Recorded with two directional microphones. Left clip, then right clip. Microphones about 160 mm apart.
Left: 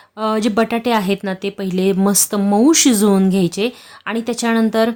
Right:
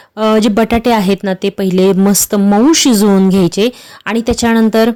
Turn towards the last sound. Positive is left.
turn(degrees=-35)  # may be behind; listen again after turning